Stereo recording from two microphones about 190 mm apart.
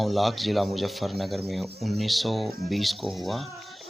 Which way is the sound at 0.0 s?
Centre (ahead or behind).